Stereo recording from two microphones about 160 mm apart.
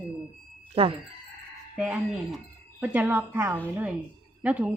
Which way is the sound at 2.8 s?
10° right (ahead or behind).